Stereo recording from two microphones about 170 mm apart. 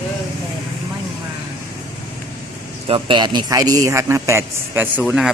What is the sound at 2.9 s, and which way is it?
A man's voice, 30° right (ahead or behind).